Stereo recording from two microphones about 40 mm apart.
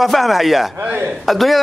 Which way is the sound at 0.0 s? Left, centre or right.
Centre.